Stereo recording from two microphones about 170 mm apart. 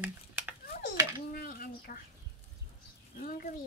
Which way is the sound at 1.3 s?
60° left (ahead or behind).